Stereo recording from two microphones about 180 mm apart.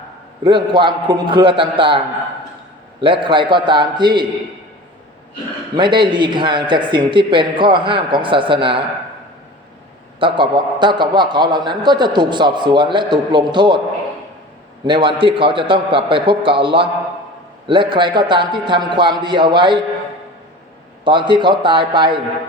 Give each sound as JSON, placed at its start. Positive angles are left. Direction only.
{"t": 0.4, "sound": "a man's voice", "side_deg": -25}
{"t": 3.0, "sound": "a man's voice", "side_deg": -25}
{"t": 5.7, "sound": "a man's voice", "side_deg": -25}
{"t": 10.2, "sound": "a man's voice", "side_deg": -25}
{"t": 14.8, "sound": "a man's voice", "side_deg": -25}
{"t": 21.0, "sound": "a man's voice", "side_deg": -25}